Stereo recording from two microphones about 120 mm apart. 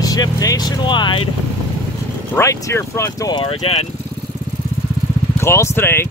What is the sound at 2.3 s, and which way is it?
Speech, 25° left (ahead or behind).